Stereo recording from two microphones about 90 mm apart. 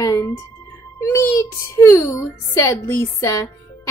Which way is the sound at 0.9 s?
30° left (ahead or behind).